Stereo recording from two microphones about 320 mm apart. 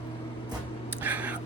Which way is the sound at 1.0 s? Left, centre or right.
Centre.